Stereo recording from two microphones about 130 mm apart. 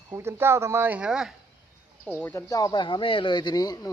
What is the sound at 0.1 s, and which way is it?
Speech, 20° right (ahead or behind).